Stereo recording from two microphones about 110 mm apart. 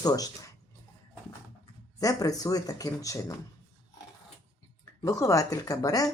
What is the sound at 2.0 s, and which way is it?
Speech, 30° left (ahead or behind).